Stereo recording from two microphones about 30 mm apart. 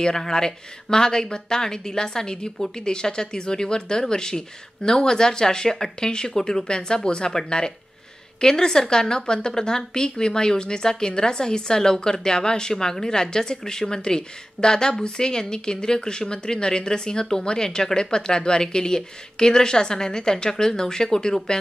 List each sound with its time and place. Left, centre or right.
0.0 s a woman's voice: centre